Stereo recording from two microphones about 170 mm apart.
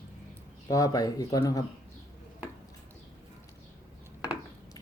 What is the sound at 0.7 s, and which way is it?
Speech, 20° left (ahead or behind).